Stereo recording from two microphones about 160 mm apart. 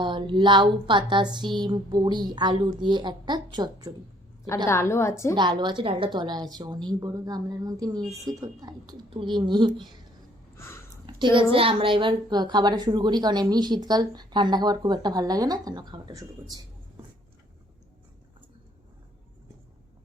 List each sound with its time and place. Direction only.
0.0 s a woman's voice: 30° right (ahead or behind)
4.4 s a woman's voice: 15° left (ahead or behind)
5.3 s a woman's voice: 30° right (ahead or behind)
10.6 s a sound: 15° left (ahead or behind)
11.0 s a woman's voice: 30° right (ahead or behind)